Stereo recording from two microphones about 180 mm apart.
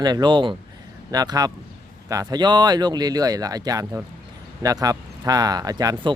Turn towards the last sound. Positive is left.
turn(degrees=-20)  # may be behind; listen again after turning